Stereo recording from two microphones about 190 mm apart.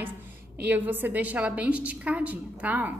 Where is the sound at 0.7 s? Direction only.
10° right (ahead or behind).